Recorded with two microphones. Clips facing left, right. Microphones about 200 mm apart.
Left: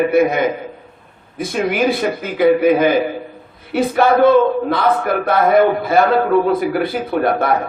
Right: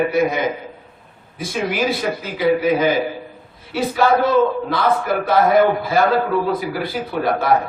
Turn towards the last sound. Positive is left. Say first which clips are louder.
# left 2 dB
turn(degrees=55)  # may be behind; listen again after turning